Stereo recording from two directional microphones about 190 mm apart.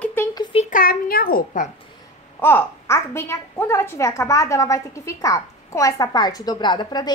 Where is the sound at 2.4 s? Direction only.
10° left (ahead or behind).